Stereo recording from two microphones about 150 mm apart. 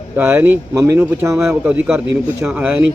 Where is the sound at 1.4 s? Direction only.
5° right (ahead or behind).